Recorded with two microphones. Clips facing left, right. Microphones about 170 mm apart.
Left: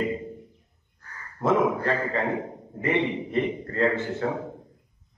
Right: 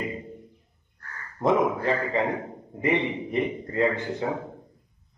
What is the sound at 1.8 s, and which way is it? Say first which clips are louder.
A man's voice: right 1 dB; 15° right (ahead or behind).